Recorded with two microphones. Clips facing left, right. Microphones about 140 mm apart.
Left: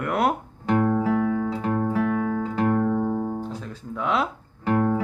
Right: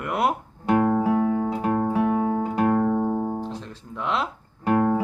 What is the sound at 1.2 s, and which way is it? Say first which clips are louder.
Music: right 1 dB; 30° right (ahead or behind).